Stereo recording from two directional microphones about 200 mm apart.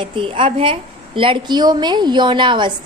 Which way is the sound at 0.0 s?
25° right (ahead or behind).